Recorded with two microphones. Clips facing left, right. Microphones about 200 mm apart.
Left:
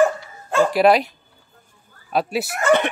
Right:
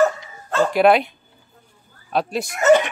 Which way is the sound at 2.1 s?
5° left (ahead or behind).